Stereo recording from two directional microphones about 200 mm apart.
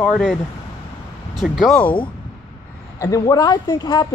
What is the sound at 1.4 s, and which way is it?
Speech, centre (ahead or behind).